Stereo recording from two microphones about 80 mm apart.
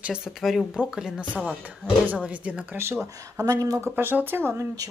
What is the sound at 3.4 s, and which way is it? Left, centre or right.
Speech, right.